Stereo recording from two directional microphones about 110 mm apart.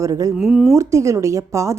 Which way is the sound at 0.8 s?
25° right (ahead or behind).